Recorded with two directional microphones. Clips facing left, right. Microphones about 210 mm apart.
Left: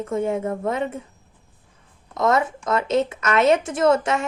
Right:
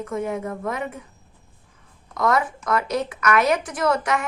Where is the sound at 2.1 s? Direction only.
25° left (ahead or behind).